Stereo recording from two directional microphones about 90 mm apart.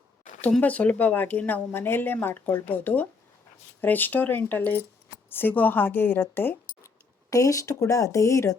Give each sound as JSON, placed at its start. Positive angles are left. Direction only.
{"t": 0.6, "sound": "speech", "side_deg": 15}
{"t": 7.3, "sound": "speech", "side_deg": 35}